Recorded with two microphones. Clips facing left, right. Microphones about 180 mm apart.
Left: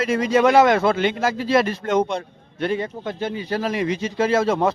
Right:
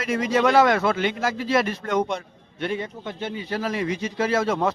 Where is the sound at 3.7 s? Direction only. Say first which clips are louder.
Left 3 dB; 20° left (ahead or behind).